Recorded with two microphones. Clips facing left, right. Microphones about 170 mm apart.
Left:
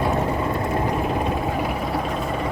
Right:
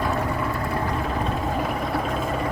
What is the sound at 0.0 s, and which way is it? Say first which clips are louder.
Vehicle: left 3 dB; 20° left (ahead or behind).